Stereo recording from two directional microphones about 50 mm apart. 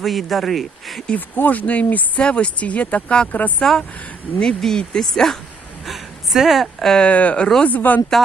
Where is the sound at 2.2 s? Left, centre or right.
Left.